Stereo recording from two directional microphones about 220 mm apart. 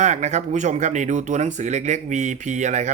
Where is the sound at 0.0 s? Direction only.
30° right (ahead or behind).